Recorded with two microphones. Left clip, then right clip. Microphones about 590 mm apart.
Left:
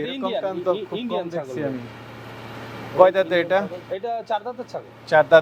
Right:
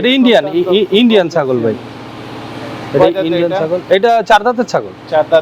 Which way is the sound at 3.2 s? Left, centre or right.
Left.